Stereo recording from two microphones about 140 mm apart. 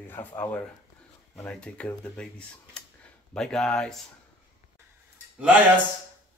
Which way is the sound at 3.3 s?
5° left (ahead or behind).